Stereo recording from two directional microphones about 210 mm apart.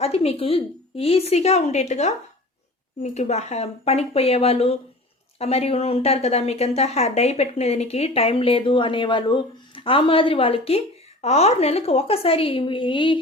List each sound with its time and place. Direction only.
0.0 s speech: 30° left (ahead or behind)